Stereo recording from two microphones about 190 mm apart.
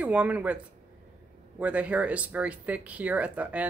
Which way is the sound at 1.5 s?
5° right (ahead or behind).